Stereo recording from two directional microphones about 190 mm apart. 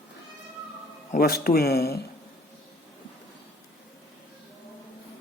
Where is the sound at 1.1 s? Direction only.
50° left (ahead or behind).